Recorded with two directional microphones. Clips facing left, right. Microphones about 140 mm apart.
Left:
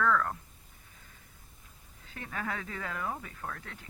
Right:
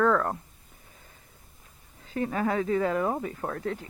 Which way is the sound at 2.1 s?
30° right (ahead or behind).